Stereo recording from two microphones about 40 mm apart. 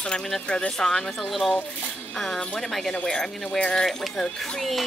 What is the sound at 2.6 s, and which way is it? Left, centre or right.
Speech, centre.